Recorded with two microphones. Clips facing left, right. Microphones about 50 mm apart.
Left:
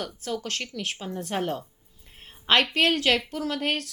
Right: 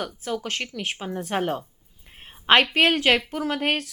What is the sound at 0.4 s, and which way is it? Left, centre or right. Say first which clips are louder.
Speech: right 2 dB; centre.